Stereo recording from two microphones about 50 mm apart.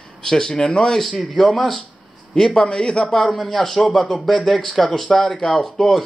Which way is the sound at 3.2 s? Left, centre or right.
Centre.